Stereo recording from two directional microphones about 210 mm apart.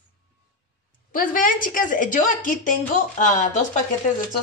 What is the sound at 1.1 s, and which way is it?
A woman's voice, 40° left (ahead or behind).